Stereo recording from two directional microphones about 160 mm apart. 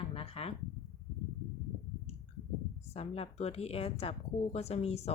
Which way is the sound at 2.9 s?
40° left (ahead or behind).